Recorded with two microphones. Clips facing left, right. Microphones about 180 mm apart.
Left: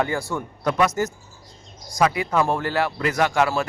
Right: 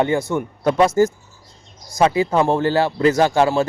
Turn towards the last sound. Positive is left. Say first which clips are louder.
# right 5 dB
turn(degrees=-30)  # may be behind; listen again after turning